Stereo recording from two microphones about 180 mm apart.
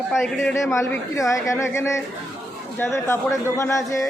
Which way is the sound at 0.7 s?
15° left (ahead or behind).